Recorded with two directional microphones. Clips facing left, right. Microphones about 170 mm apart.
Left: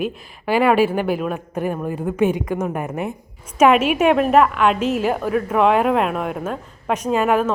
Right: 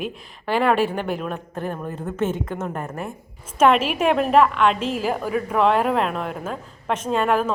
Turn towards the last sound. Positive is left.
turn(degrees=5)  # may be behind; listen again after turning